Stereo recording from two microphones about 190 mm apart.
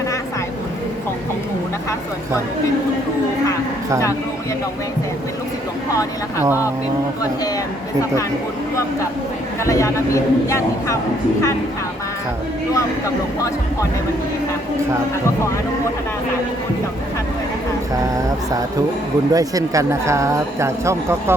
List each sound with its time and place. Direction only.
9.6 s a man's voice: 15° left (ahead or behind)
19.3 s speech: 20° right (ahead or behind)